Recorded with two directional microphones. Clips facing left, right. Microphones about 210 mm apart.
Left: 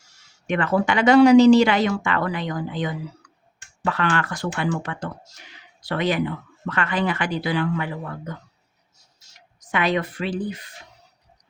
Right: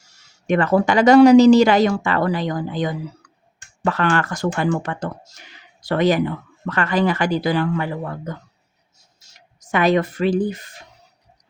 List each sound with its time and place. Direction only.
0.4 s speech: 40° right (ahead or behind)
9.6 s speech: 45° right (ahead or behind)